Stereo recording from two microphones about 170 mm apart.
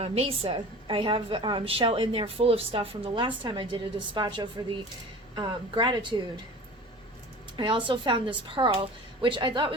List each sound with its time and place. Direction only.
0.0 s a woman's voice: 35° right (ahead or behind)
7.5 s speech: 30° right (ahead or behind)